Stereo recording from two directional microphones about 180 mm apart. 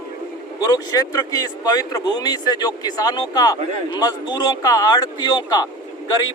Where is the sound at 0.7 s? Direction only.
20° left (ahead or behind).